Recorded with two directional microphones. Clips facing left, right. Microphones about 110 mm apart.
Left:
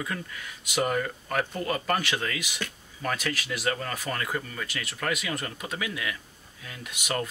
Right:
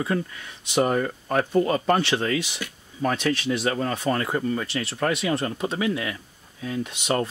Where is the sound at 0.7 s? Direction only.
30° right (ahead or behind).